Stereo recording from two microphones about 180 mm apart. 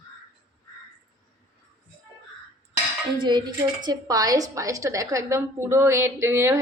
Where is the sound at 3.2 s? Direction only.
25° right (ahead or behind).